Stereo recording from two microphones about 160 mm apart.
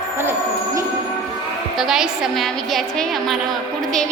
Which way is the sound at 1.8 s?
Centre (ahead or behind).